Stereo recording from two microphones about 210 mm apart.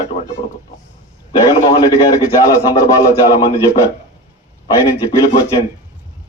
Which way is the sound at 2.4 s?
15° left (ahead or behind).